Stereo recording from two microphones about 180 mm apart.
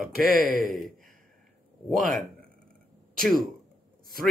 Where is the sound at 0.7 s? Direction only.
Centre (ahead or behind).